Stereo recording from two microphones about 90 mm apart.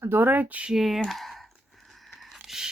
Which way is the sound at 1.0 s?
Centre (ahead or behind).